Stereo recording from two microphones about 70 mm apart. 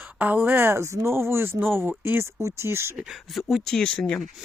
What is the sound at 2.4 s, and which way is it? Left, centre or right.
Speech, right.